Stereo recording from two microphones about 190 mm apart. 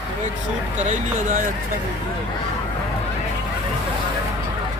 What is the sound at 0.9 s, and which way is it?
Speech, 40° right (ahead or behind).